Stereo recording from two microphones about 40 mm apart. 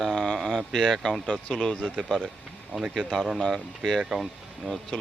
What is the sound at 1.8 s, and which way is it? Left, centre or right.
Speech, centre.